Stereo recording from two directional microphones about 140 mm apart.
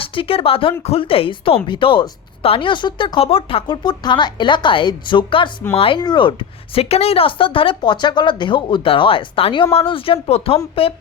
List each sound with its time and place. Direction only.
0.0 s a woman's voice: 40° left (ahead or behind)
6.7 s a woman's voice: 45° left (ahead or behind)